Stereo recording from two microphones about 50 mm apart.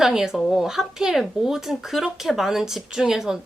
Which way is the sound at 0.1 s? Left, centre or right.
Centre.